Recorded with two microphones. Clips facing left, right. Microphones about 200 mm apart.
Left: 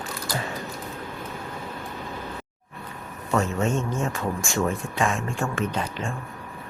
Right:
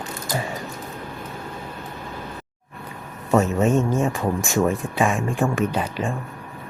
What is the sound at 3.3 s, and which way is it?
Speech, 20° right (ahead or behind).